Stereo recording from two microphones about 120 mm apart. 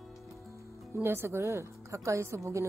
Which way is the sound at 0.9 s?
20° right (ahead or behind).